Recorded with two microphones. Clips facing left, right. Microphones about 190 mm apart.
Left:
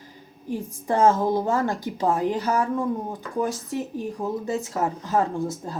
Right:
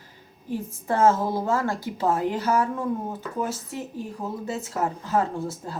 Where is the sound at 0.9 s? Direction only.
15° left (ahead or behind).